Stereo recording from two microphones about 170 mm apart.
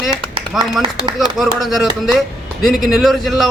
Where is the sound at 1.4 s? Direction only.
Centre (ahead or behind).